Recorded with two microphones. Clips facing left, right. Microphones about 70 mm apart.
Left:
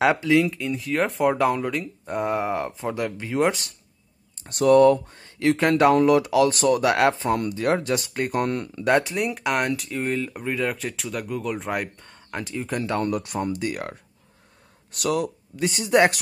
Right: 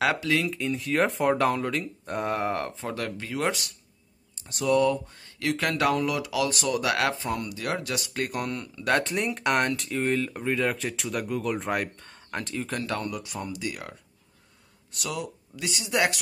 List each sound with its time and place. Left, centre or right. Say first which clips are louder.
0.0 s speech: left 6 dB; left
0.5 s speech: left 1 dB; centre
2.9 s speech: left 5 dB; centre
4.4 s speech: left 8 dB; left
9.0 s speech: left 2 dB; centre
13.0 s speech: left 8 dB; left
15.6 s speech: left 7 dB; left